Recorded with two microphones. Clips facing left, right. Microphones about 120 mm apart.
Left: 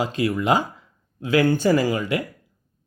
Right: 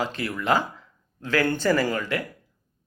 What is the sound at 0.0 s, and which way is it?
Speech, 15° left (ahead or behind).